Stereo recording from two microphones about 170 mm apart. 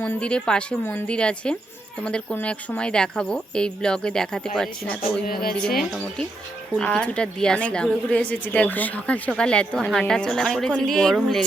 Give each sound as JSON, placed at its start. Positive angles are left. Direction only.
{"t": 0.0, "sound": "speech", "side_deg": 10}
{"t": 5.2, "sound": "speech", "side_deg": 60}
{"t": 5.5, "sound": "speech", "side_deg": 5}